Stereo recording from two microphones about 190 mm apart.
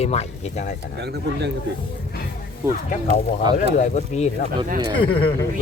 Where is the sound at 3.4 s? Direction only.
25° right (ahead or behind).